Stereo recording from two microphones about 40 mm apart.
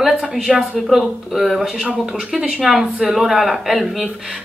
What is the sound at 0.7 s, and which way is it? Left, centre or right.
Speech, centre.